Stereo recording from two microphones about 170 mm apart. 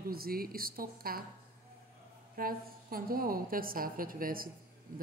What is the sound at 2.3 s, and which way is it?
A woman's voice, 60° right (ahead or behind).